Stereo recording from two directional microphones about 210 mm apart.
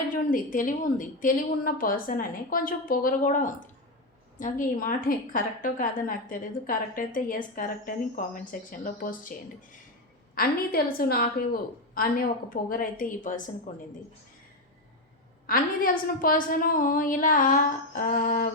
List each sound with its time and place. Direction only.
0.1 s a woman's voice: 40° left (ahead or behind)
10.3 s a woman's voice: 45° left (ahead or behind)
15.4 s a woman's voice: 40° left (ahead or behind)